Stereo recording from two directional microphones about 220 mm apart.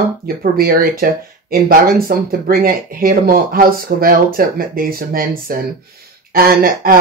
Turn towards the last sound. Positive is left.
turn(degrees=-40)  # may be behind; listen again after turning